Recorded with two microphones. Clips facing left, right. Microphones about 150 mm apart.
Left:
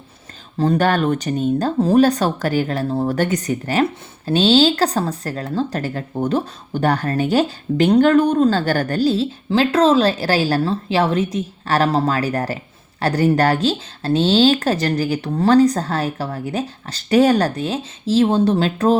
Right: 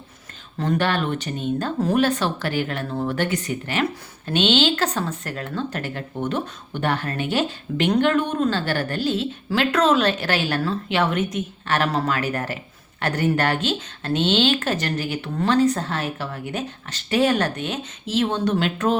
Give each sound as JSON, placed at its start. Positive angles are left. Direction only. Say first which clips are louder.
{"t": 0.6, "sound": "speech", "louder": "left 5 dB", "side_deg": 35}